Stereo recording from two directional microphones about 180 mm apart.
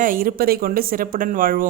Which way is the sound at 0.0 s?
50° right (ahead or behind).